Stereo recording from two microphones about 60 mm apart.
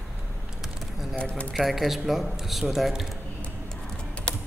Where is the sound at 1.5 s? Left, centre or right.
Centre.